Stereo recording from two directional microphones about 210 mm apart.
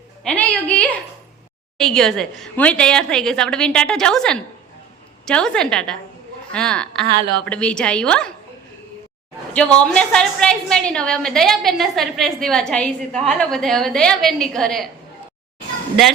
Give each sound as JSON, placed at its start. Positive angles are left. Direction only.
{"t": 0.3, "sound": "a woman's voice", "side_deg": 5}
{"t": 7.1, "sound": "a woman's voice", "side_deg": -25}
{"t": 7.4, "sound": "a woman's voice", "side_deg": 5}
{"t": 9.5, "sound": "a woman's voice", "side_deg": 5}